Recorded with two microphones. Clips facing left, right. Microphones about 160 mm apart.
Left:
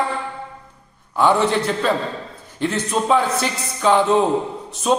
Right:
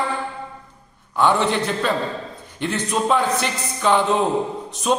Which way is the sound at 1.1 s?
5° left (ahead or behind).